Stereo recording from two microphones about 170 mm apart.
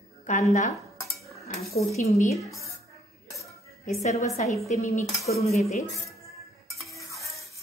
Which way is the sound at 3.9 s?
40° left (ahead or behind).